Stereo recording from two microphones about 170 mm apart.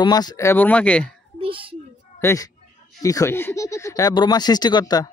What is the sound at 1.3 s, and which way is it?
Speech, 30° right (ahead or behind).